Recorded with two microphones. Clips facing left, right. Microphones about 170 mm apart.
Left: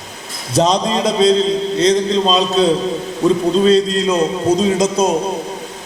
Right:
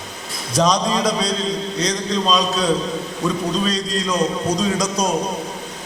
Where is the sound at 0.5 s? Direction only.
25° left (ahead or behind).